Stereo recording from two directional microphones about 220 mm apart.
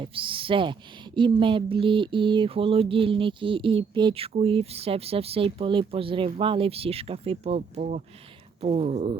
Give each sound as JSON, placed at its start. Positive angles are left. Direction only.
{"t": 0.0, "sound": "speech", "side_deg": -25}